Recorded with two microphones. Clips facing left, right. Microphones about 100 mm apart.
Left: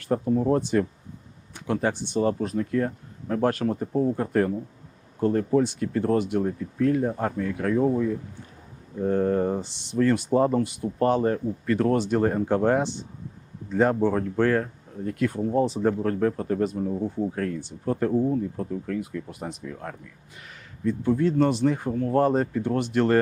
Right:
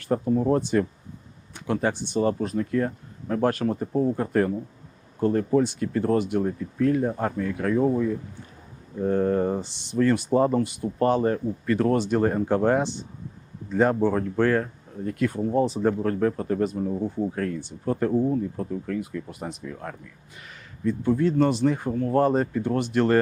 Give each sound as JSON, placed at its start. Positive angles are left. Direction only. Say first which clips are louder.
{"t": 0.1, "sound": "speech", "louder": "even", "side_deg": -25}